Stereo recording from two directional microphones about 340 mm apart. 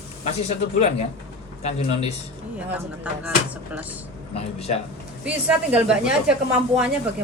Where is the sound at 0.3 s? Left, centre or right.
Centre.